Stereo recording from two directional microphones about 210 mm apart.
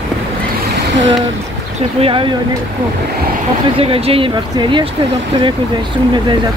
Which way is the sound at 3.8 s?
30° right (ahead or behind).